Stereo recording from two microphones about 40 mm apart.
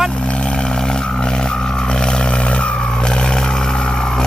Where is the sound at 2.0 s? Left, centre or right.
Left.